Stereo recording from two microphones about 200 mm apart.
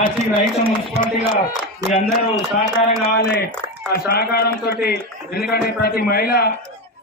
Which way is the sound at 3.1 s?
50° left (ahead or behind).